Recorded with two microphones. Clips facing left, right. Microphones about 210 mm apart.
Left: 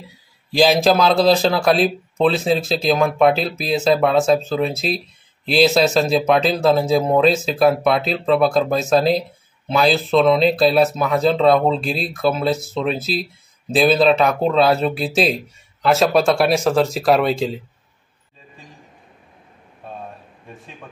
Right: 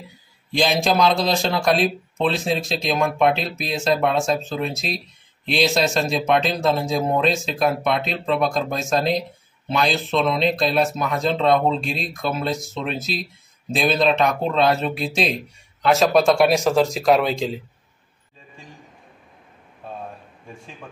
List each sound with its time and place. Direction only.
0.5 s a man's voice: centre (ahead or behind)
19.8 s a sound: centre (ahead or behind)
20.4 s a man's voice: centre (ahead or behind)